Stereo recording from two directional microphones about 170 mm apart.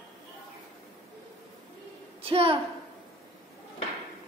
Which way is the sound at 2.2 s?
35° right (ahead or behind).